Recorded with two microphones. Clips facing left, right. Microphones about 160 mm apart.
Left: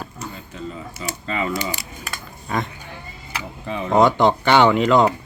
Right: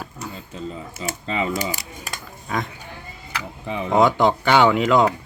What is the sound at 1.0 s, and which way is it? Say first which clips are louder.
Speech: right 1 dB; 25° right (ahead or behind).